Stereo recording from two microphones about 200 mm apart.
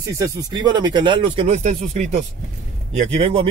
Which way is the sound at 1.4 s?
35° right (ahead or behind).